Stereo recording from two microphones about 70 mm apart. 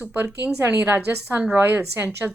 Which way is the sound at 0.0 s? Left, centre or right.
Centre.